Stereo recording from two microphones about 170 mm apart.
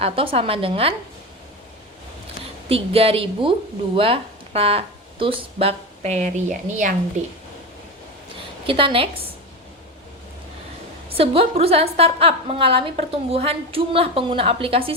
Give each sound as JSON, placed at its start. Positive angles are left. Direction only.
{"t": 0.0, "sound": "a woman's voice", "side_deg": -35}
{"t": 2.6, "sound": "a woman's voice", "side_deg": -35}
{"t": 8.6, "sound": "a woman's voice", "side_deg": -30}
{"t": 11.1, "sound": "a woman's voice", "side_deg": -35}